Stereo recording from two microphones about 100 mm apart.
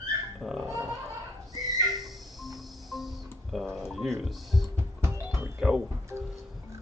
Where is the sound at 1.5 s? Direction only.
Centre (ahead or behind).